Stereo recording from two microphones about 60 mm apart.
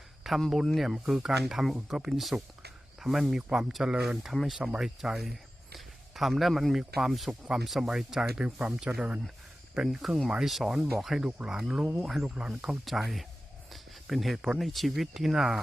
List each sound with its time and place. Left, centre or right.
0.3 s speech: centre; by 9.2 s right
9.8 s speech: centre
13.7 s a sound: centre
14.6 s speech: centre